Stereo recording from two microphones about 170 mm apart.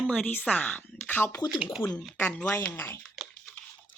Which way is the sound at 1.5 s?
Centre (ahead or behind).